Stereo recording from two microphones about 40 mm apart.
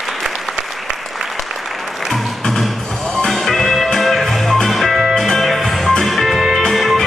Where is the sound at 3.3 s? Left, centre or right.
Centre.